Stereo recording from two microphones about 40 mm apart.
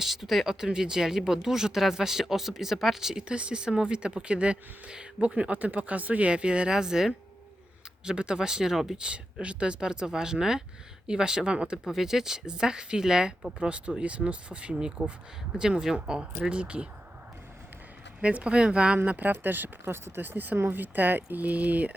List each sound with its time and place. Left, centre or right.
0.0 s speech: centre
0.6 s speech: centre
3.2 s speech: right
5.2 s speech: right; by 8.8 s centre
9.0 s speech: right
11.9 s speech: centre
13.6 s speech: right
18.2 s speech: right
18.9 s speech: right
19.4 s speech: right
20.2 s speech: right